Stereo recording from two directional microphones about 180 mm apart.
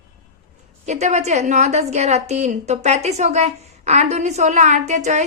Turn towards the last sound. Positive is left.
turn(degrees=-40)  # may be behind; listen again after turning